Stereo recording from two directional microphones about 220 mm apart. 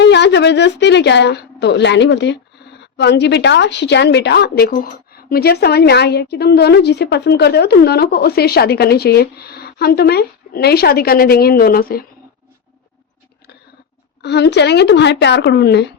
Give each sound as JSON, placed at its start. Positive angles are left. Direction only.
{"t": 0.0, "sound": "a woman's voice", "side_deg": 50}
{"t": 14.2, "sound": "a woman's voice", "side_deg": 50}